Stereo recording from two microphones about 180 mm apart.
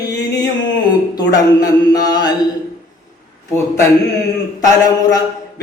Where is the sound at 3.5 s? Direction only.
15° left (ahead or behind).